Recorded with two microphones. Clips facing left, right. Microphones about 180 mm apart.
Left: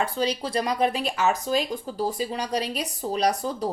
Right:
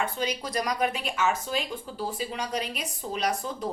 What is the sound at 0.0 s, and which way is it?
A woman's voice, 35° left (ahead or behind).